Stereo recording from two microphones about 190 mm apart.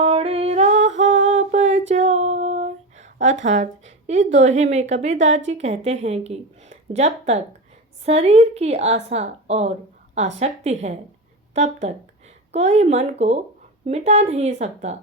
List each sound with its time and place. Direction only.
0.0 s music: 30° right (ahead or behind)
1.2 s a sound: 40° right (ahead or behind)
3.4 s a woman's voice: 40° right (ahead or behind)